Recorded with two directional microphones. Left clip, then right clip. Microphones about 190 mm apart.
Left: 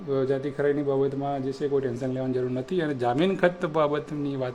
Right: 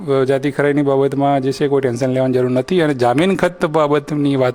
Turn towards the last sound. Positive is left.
turn(degrees=-40)  # may be behind; listen again after turning